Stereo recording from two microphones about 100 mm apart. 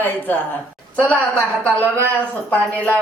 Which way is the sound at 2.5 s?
15° left (ahead or behind).